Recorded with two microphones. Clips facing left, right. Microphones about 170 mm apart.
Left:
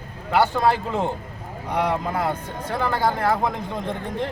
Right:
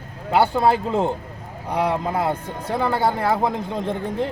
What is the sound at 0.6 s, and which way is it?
Speech, 30° right (ahead or behind).